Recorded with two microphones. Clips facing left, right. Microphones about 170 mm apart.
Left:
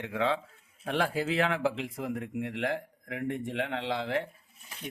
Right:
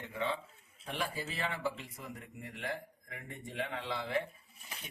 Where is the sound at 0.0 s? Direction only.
90° left.